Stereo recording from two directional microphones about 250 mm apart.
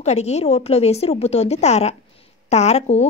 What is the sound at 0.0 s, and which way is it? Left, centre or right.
A woman's voice, left.